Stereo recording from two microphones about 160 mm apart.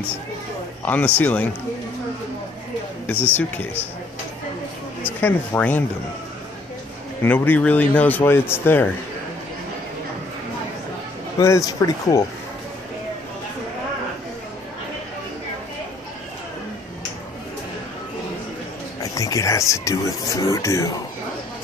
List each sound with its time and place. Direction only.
0.8 s speech: 10° left (ahead or behind)
5.0 s speech: 10° left (ahead or behind)
7.2 s speech: 10° left (ahead or behind)
11.3 s speech: 20° left (ahead or behind)
18.9 s speech: 20° left (ahead or behind)